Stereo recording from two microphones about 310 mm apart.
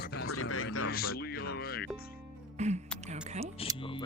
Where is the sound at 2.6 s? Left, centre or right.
Right.